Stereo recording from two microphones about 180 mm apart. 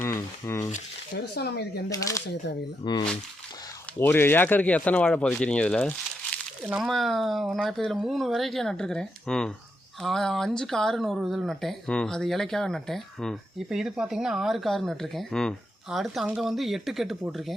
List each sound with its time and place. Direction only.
0.0 s speech: 15° left (ahead or behind)
1.1 s speech: 65° left (ahead or behind)
1.9 s speech: 20° left (ahead or behind)
4.0 s speech: 10° left (ahead or behind)